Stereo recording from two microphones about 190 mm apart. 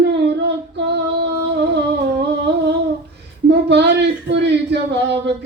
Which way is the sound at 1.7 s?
65° right (ahead or behind).